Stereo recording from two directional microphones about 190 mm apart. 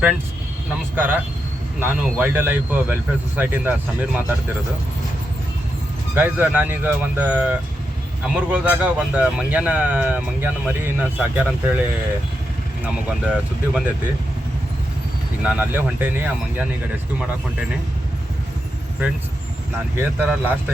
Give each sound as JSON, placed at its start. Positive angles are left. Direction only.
{"t": 0.9, "sound": "speech", "side_deg": -10}
{"t": 6.1, "sound": "speech", "side_deg": -10}
{"t": 12.8, "sound": "speech", "side_deg": -5}
{"t": 15.4, "sound": "speech", "side_deg": -10}
{"t": 20.0, "sound": "speech", "side_deg": -10}